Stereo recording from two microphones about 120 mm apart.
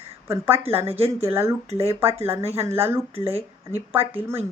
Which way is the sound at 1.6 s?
60° right (ahead or behind).